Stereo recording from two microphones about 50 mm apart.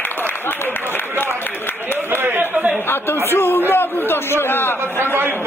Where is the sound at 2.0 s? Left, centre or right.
Right.